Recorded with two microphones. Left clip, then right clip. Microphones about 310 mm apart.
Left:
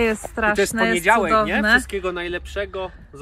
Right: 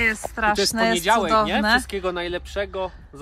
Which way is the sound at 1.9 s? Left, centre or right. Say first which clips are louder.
Left 1 dB; right.